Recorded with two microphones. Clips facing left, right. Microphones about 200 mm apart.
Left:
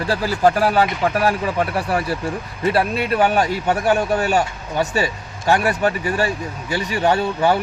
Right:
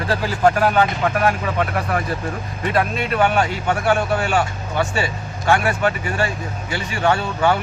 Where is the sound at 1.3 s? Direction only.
30° left (ahead or behind).